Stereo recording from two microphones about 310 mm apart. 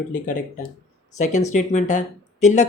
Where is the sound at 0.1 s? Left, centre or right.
Left.